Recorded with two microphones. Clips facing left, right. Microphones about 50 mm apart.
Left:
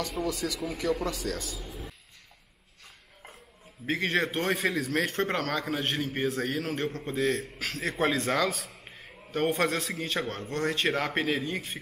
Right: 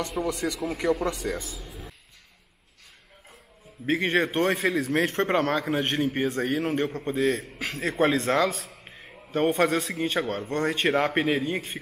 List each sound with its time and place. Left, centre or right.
0.0 s speech: centre
0.7 s a man's voice: right
1.6 s a sound: centre
3.8 s a man's voice: centre